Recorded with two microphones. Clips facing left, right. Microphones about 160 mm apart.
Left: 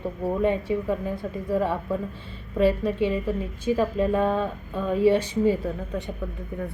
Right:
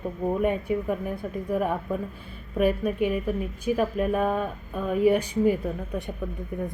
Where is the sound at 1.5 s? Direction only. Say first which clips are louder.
Left 2 dB; 15° right (ahead or behind).